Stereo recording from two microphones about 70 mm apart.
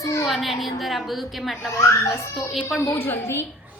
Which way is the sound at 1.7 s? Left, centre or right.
Left.